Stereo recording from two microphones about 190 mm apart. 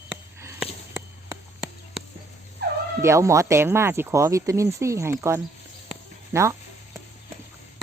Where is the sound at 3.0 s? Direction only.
15° right (ahead or behind).